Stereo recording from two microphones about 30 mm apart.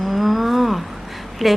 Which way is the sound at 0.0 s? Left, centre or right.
Centre.